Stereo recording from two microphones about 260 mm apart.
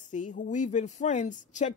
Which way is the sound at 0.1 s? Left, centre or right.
Left.